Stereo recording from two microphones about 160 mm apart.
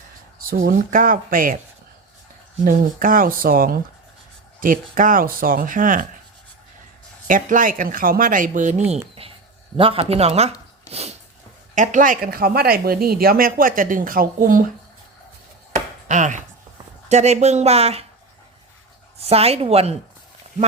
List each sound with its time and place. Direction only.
0.3 s speech: 65° right (ahead or behind)
2.6 s speech: 60° right (ahead or behind)
7.3 s speech: 55° right (ahead or behind)
8.9 s a sound: 35° right (ahead or behind)
9.7 s speech: 35° right (ahead or behind)
11.7 s speech: 55° right (ahead or behind)
15.7 s chopping: 50° right (ahead or behind)
17.1 s speech: 45° right (ahead or behind)
19.2 s speech: 40° right (ahead or behind)